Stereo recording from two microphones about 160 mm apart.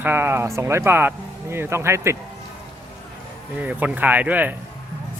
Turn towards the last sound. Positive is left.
turn(degrees=-10)  # may be behind; listen again after turning